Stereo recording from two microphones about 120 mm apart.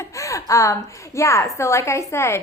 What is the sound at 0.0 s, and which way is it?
A child's voice, 25° left (ahead or behind).